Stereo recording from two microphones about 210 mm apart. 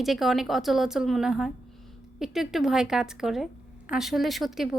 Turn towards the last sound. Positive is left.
turn(degrees=0)  # may be behind; listen again after turning